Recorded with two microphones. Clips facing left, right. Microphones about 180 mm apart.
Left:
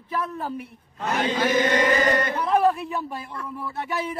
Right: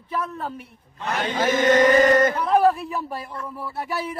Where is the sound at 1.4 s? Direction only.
45° right (ahead or behind).